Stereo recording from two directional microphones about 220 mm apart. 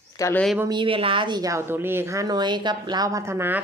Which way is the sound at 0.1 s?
15° left (ahead or behind).